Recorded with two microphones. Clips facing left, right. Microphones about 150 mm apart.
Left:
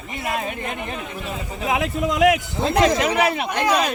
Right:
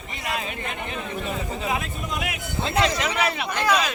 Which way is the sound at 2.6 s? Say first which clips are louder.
Left 4 dB; 45° left (ahead or behind).